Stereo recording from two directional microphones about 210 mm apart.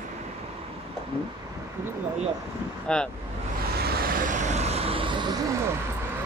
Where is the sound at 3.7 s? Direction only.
45° right (ahead or behind); by 5.6 s 20° right (ahead or behind).